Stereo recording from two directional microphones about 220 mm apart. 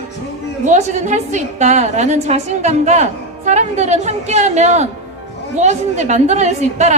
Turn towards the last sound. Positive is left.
turn(degrees=-30)  # may be behind; listen again after turning